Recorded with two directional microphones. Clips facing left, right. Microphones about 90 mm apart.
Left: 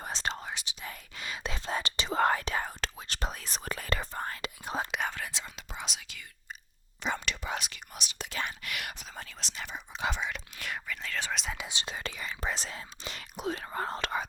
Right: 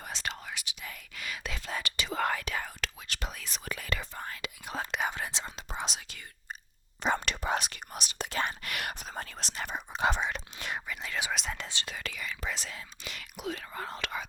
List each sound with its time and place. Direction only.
0.0 s whispering: 30° left (ahead or behind)
5.0 s whispering: 25° right (ahead or behind)
10.6 s whispering: 20° right (ahead or behind)
11.3 s whispering: centre (ahead or behind)
11.7 s whispering: 20° left (ahead or behind)